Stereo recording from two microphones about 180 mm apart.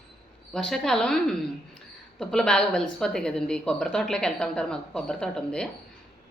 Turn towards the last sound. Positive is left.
turn(degrees=5)  # may be behind; listen again after turning